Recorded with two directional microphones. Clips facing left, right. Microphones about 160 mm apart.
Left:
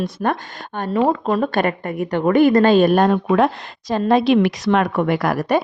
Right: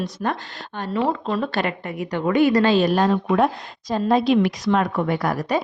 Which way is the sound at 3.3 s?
90° left.